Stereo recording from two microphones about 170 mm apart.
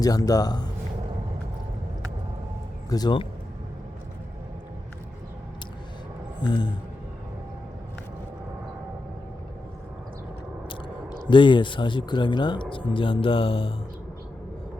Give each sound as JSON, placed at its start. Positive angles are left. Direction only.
{"t": 0.0, "sound": "speech", "side_deg": 20}
{"t": 2.9, "sound": "speech", "side_deg": 25}
{"t": 11.3, "sound": "speech", "side_deg": 30}